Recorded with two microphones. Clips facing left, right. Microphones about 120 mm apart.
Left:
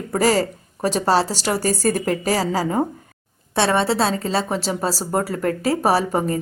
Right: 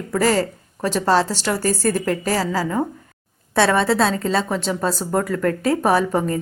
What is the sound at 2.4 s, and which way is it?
Speech, 40° left (ahead or behind).